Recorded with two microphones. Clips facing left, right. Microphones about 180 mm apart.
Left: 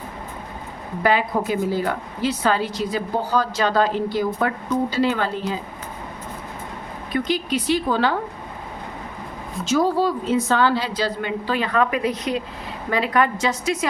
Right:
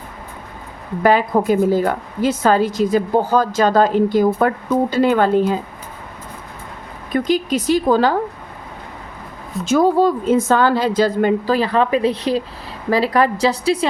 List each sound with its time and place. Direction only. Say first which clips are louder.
1.0 s a woman's voice: right 6 dB; 45° right (ahead or behind)
7.3 s a woman's voice: right 5 dB; 45° right (ahead or behind)
9.6 s a woman's voice: right 5 dB; 50° right (ahead or behind); by 13.7 s 35° right (ahead or behind)